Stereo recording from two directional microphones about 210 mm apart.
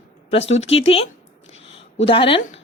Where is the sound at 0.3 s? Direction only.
30° left (ahead or behind).